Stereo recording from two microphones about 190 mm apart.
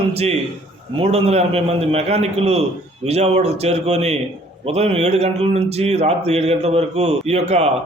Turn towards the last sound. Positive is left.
turn(degrees=-35)  # may be behind; listen again after turning